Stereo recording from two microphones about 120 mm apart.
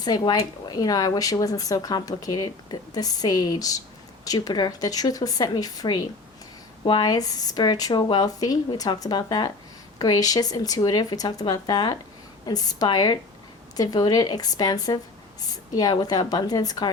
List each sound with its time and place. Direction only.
0.0 s speech: 35° left (ahead or behind)